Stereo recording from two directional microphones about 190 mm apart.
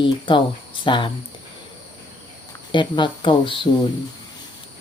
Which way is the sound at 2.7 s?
25° left (ahead or behind).